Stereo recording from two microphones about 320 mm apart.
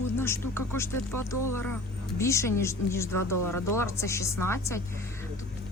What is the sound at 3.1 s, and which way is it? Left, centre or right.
Speech, left.